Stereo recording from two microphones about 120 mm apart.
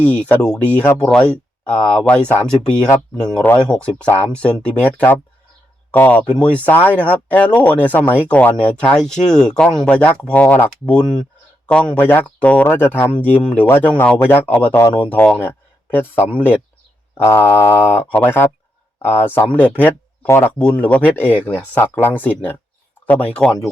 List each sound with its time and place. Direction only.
0.0 s speech: 10° left (ahead or behind)